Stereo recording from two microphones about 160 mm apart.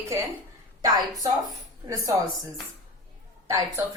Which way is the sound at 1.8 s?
25° right (ahead or behind).